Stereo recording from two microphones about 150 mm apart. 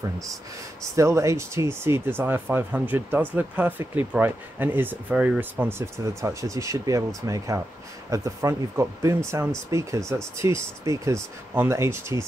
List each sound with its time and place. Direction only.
0.9 s speech: 20° right (ahead or behind)